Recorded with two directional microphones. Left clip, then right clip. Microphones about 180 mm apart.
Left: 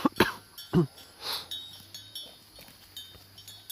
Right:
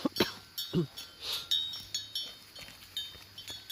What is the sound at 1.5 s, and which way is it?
Chink, 15° left (ahead or behind).